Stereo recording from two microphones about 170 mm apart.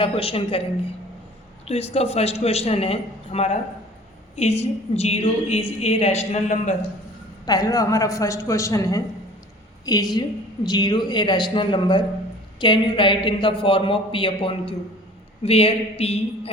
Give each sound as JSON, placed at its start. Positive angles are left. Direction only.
{"t": 0.0, "sound": "a woman's voice", "side_deg": 35}
{"t": 1.6, "sound": "a woman's voice", "side_deg": 35}
{"t": 7.4, "sound": "a woman's voice", "side_deg": 20}